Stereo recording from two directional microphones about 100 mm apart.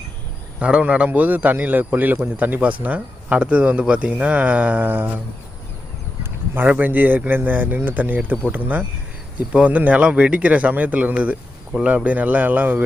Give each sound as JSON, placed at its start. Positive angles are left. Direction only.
{"t": 0.6, "sound": "a man's voice", "side_deg": -10}
{"t": 6.5, "sound": "speech", "side_deg": -15}
{"t": 9.5, "sound": "a man's voice", "side_deg": -15}